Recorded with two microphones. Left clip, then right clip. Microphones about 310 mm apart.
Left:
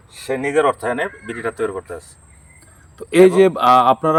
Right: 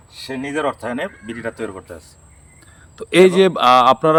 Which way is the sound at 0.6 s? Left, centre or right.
Left.